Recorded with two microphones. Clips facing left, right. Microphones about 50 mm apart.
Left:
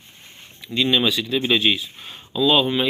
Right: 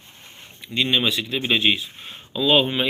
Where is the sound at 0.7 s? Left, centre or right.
Centre.